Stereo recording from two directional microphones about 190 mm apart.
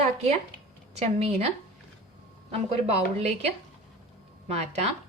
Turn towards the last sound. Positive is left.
turn(degrees=-35)  # may be behind; listen again after turning